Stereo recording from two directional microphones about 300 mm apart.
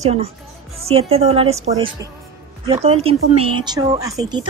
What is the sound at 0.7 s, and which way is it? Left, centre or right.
A woman's voice, centre.